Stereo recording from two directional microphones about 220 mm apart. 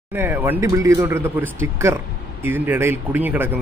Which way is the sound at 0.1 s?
10° right (ahead or behind).